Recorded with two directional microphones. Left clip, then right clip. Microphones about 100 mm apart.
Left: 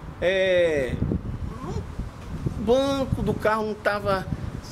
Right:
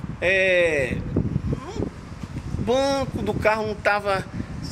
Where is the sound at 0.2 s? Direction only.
15° left (ahead or behind).